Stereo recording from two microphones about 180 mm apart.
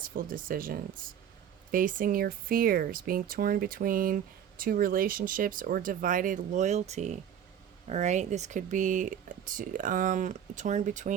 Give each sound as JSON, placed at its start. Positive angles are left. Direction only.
{"t": 0.2, "sound": "speech", "side_deg": -50}